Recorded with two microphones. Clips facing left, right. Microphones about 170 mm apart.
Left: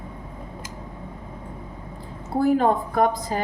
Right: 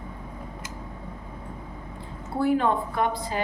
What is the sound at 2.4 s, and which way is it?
A woman's voice, 40° left (ahead or behind).